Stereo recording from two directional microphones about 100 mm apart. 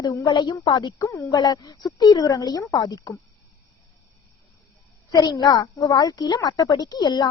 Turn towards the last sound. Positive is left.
turn(degrees=40)  # may be behind; listen again after turning